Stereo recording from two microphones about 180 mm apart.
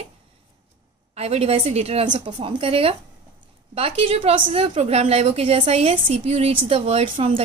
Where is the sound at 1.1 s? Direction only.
35° right (ahead or behind).